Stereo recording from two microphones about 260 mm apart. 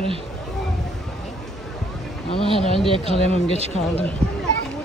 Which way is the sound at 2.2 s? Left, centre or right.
Left.